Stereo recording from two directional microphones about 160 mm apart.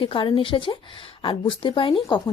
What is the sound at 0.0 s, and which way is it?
Speech, 30° left (ahead or behind).